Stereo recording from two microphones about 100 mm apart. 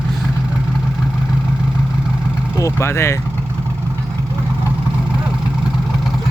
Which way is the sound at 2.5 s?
30° left (ahead or behind).